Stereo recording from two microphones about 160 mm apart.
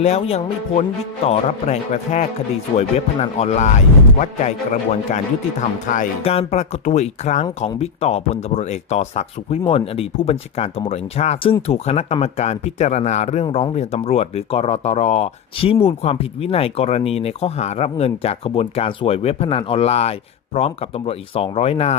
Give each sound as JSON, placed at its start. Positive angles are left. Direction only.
{"t": 0.0, "sound": "speech", "side_deg": 40}
{"t": 6.2, "sound": "speech", "side_deg": 40}